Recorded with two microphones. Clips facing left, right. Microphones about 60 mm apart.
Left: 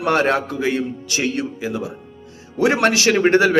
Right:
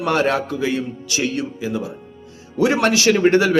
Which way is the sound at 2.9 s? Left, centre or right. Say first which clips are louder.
Right 1 dB; left.